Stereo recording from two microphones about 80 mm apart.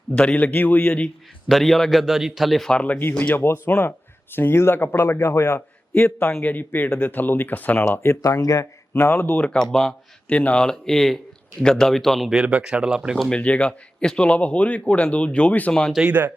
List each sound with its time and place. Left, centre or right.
0.1 s speech: centre
1.5 s a man's voice: centre; by 8.1 s left
8.1 s speech: left
8.9 s a man's voice: left; by 12.3 s centre
12.6 s speech: centre
13.1 s a man's voice: centre
16.0 s speech: right